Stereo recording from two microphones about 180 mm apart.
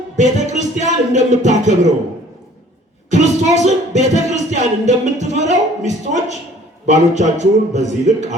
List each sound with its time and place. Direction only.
0.2 s music: 40° right (ahead or behind)
3.1 s music: 40° right (ahead or behind)